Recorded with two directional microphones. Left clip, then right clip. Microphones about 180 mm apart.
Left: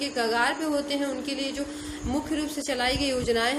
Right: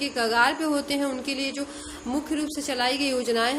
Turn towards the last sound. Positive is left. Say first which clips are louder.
# right 1 dB
turn(degrees=-25)  # may be behind; listen again after turning